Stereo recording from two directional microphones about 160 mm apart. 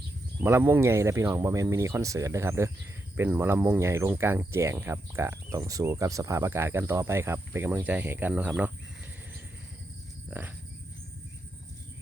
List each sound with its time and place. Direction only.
0.4 s speech: 15° right (ahead or behind)
10.2 s speech: 10° right (ahead or behind)